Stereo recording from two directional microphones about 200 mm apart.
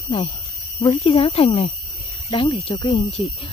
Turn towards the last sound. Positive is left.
turn(degrees=25)  # may be behind; listen again after turning